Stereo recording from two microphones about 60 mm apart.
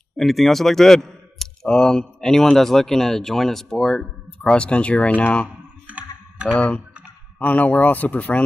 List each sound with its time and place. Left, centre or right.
0.2 s speech: centre; by 5.5 s left
5.9 s a sound: centre
7.3 s speech: left